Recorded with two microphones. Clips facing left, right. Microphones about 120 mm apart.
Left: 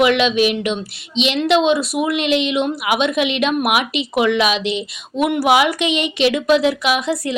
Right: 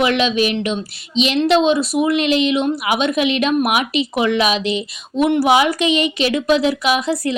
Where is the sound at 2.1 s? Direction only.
40° right (ahead or behind).